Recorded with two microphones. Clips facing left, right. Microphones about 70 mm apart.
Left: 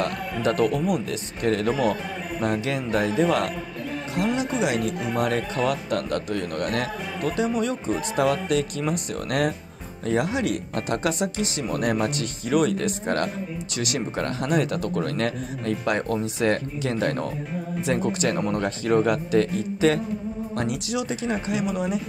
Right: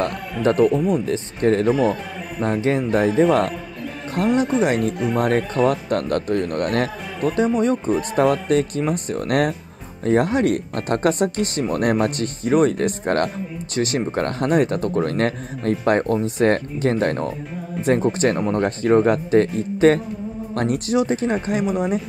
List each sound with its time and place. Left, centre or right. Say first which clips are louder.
0.5 s speech: right 5 dB; right
1.7 s speech: right 4 dB; centre
2.4 s speech: right 6 dB; right
4.6 s speech: right 5 dB; right
4.9 s speech: right 5 dB; centre
5.2 s speech: right 5 dB; right
7.2 s speech: right 6 dB; right